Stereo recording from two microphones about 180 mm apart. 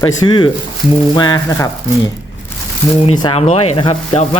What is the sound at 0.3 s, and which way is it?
Speech, 25° left (ahead or behind).